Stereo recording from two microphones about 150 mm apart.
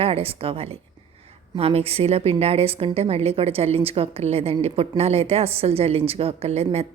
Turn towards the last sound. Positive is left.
turn(degrees=-45)  # may be behind; listen again after turning